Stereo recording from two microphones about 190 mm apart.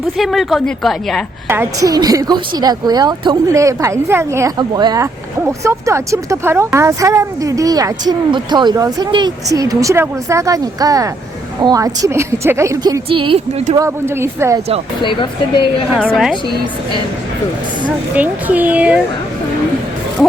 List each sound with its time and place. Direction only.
0.2 s a woman's voice: centre (ahead or behind)
1.5 s a woman's voice: 15° right (ahead or behind)
13.1 s a woman's voice: 30° right (ahead or behind)
13.7 s speech: 15° right (ahead or behind)
15.0 s speech: 25° left (ahead or behind)
15.9 s a woman's voice: 5° left (ahead or behind)
18.1 s speech: 10° right (ahead or behind)